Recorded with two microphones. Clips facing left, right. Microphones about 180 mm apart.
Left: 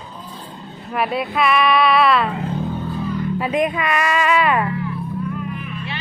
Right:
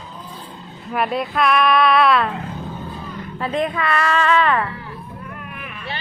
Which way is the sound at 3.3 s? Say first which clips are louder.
Even; 15° left (ahead or behind).